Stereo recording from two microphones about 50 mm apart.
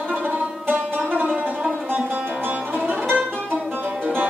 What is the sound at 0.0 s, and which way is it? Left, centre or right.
Music, right.